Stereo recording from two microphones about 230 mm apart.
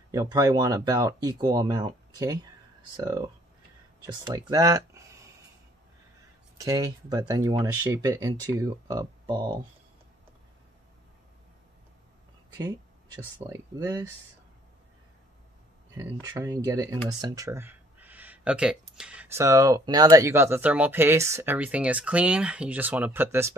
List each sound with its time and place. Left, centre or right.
0.1 s speech: centre
6.6 s speech: centre
12.5 s speech: centre
16.0 s speech: centre